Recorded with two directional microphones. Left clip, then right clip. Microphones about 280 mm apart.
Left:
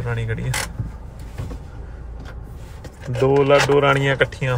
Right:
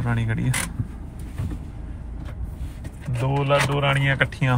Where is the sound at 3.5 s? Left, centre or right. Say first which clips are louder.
Left 3 dB; left.